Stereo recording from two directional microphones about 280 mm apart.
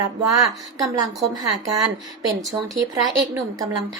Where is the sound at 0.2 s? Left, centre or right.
Centre.